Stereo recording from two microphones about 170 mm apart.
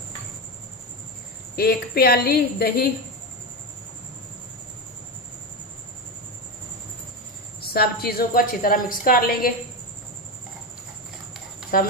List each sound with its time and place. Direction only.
1.5 s a woman's voice: 65° left (ahead or behind)
7.7 s a woman's voice: 65° left (ahead or behind)